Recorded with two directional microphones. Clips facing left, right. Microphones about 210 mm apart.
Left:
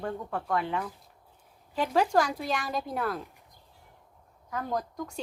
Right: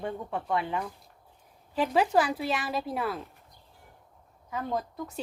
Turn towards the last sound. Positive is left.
turn(degrees=-5)  # may be behind; listen again after turning